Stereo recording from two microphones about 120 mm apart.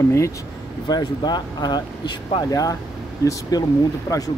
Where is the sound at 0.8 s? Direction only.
35° left (ahead or behind).